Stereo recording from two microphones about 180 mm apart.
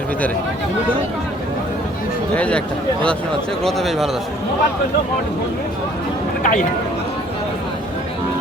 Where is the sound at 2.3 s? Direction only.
5° left (ahead or behind).